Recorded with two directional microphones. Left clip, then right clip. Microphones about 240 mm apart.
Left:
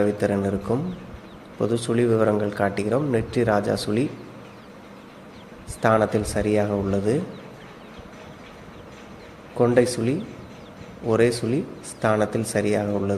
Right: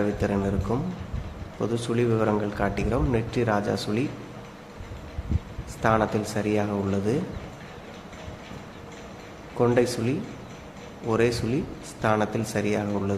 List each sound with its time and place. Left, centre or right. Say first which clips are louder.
0.2 s a man's voice: left 3 dB; centre
5.8 s a man's voice: left 3 dB; centre
9.6 s a man's voice: left 3 dB; centre